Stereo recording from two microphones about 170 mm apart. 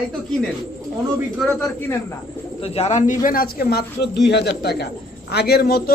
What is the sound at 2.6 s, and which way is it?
Speech, 35° left (ahead or behind).